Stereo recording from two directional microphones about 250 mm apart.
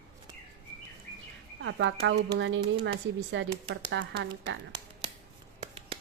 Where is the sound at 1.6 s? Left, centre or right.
Right.